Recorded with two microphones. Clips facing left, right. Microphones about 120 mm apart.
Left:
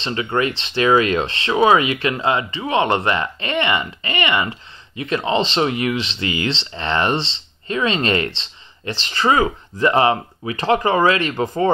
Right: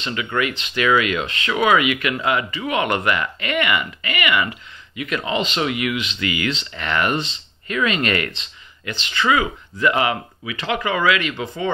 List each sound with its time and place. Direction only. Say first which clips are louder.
0.0 s speech: left 3 dB; 35° left (ahead or behind)